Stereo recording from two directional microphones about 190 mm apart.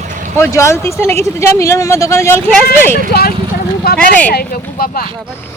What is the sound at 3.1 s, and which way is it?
Speech, 55° left (ahead or behind).